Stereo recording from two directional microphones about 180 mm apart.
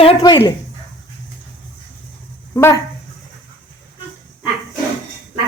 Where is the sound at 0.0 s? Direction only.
30° left (ahead or behind).